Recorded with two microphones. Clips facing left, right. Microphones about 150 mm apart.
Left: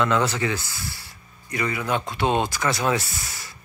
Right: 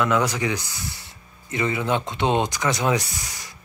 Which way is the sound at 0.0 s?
10° right (ahead or behind).